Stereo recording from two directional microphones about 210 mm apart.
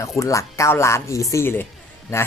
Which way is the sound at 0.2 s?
15° left (ahead or behind).